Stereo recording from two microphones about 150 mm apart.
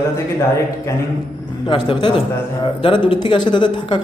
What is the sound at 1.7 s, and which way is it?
A man's voice, 35° left (ahead or behind).